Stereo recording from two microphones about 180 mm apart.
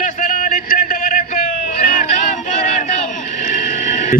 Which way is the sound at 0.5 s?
50° left (ahead or behind).